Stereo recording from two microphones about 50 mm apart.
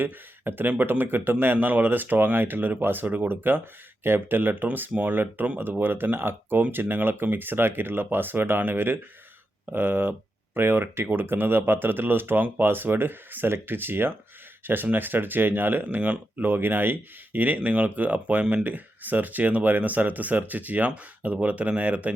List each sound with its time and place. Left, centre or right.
0.0 s speech: right
16.0 s speech: right
16.5 s speech: right